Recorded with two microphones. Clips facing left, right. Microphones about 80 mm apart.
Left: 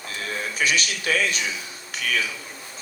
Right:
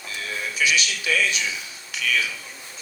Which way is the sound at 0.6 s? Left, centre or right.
Left.